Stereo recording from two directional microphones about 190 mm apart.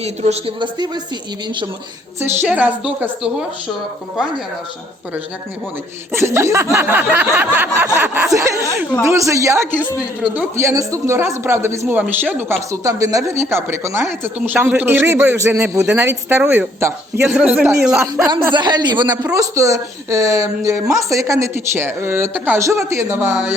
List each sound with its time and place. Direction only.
0.0 s speech: 35° right (ahead or behind)
2.2 s a man's voice: 10° right (ahead or behind)
6.1 s a man's voice: 15° right (ahead or behind)
18.5 s a man's voice: 25° right (ahead or behind); by 23.6 s 5° right (ahead or behind)